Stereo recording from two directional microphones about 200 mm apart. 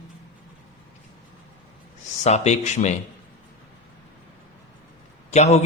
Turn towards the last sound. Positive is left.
turn(degrees=35)  # may be behind; listen again after turning